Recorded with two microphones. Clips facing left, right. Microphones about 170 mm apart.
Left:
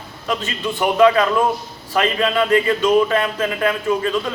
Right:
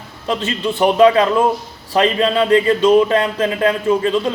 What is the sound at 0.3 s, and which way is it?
Speech, 30° right (ahead or behind).